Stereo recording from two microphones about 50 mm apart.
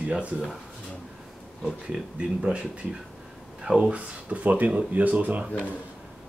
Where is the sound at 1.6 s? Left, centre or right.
Centre.